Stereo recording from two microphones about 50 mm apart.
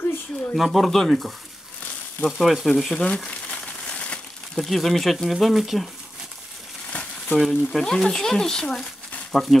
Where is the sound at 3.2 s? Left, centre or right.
Left.